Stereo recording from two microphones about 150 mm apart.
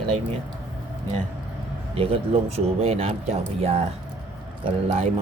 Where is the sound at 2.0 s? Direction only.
40° right (ahead or behind).